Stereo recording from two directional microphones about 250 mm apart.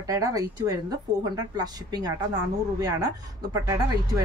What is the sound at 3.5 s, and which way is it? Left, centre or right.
Speech, centre.